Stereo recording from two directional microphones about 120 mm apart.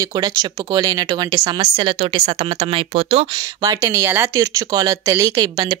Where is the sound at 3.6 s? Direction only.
20° right (ahead or behind).